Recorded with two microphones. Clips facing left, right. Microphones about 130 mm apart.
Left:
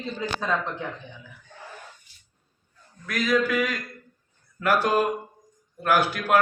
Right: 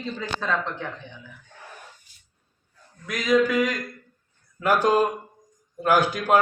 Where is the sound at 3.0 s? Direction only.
20° right (ahead or behind).